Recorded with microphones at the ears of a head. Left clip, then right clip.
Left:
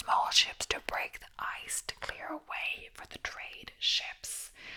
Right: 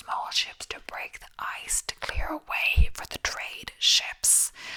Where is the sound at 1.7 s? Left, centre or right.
Right.